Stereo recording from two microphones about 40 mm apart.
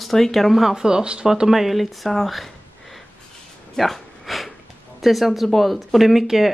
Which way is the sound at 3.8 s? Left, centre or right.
Centre.